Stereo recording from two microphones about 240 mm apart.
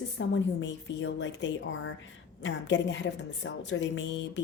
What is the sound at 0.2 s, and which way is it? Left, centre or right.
A woman's voice, left.